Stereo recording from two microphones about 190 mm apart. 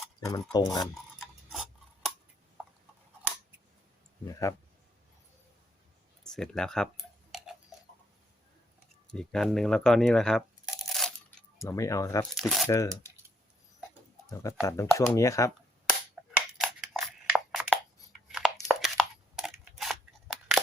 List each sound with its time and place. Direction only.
0.5 s stir: 20° left (ahead or behind)
4.3 s speech: 15° left (ahead or behind)
6.2 s speech: centre (ahead or behind)
7.3 s tick-tock: centre (ahead or behind)
9.0 s speech: 5° left (ahead or behind)
11.6 s speech: 15° left (ahead or behind)
12.3 s speech: centre (ahead or behind)
12.6 s speech: 15° left (ahead or behind)
14.3 s speech: 15° left (ahead or behind)
15.9 s a sound: centre (ahead or behind)